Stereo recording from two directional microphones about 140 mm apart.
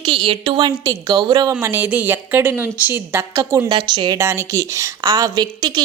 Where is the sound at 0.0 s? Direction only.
35° right (ahead or behind).